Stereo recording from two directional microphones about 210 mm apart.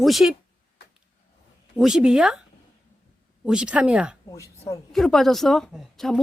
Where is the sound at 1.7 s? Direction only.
5° right (ahead or behind).